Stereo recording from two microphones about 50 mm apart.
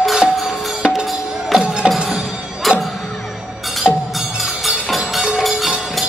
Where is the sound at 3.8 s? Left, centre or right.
Centre.